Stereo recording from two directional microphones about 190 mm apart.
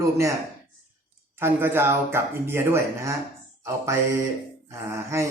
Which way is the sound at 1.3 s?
10° right (ahead or behind).